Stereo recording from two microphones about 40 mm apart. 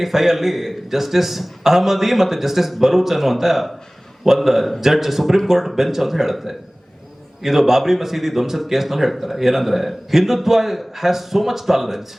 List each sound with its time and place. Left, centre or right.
0.0 s a man's voice: centre